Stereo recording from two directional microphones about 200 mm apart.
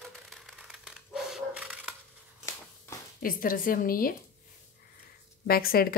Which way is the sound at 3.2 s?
45° left (ahead or behind).